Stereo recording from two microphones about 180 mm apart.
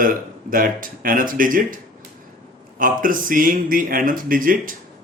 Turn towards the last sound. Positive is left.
turn(degrees=-50)  # may be behind; listen again after turning